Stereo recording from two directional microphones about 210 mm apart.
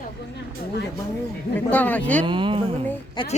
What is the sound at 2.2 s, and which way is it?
Speech, 25° right (ahead or behind).